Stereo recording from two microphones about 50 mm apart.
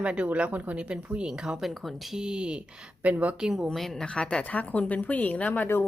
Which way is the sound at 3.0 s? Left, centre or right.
Right.